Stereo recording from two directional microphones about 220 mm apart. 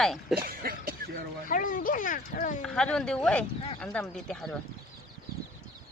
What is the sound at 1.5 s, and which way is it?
Speech, 35° left (ahead or behind).